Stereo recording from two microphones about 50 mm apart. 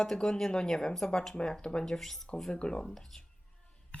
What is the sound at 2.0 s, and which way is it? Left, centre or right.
Speech, centre.